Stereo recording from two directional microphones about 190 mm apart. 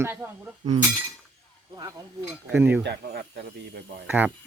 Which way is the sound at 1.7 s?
20° right (ahead or behind).